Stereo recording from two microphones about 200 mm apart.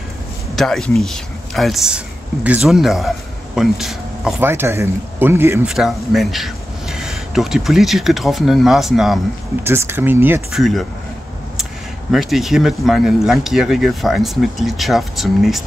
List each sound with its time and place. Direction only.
0.6 s speech: centre (ahead or behind)
12.1 s speech: centre (ahead or behind)